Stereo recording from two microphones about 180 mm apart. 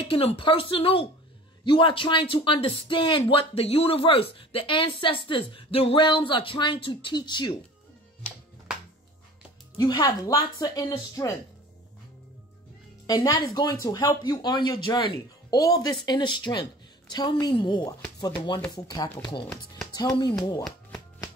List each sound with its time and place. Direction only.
0.0 s speech: 30° left (ahead or behind)
9.8 s speech: 25° left (ahead or behind)
13.0 s speech: 20° left (ahead or behind)
19.4 s speech: 5° left (ahead or behind)
19.9 s speech: 25° left (ahead or behind)